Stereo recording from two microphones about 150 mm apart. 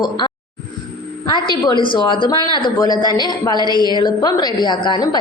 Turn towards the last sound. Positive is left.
turn(degrees=30)  # may be behind; listen again after turning